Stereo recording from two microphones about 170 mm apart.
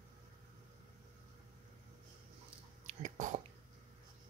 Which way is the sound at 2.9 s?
45° right (ahead or behind).